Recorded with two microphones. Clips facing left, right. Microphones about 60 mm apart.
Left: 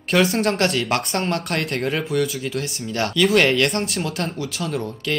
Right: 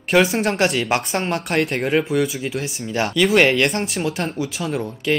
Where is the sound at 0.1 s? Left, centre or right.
Centre.